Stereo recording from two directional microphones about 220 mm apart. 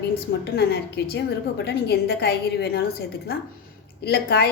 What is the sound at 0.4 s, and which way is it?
A woman's voice, 45° left (ahead or behind).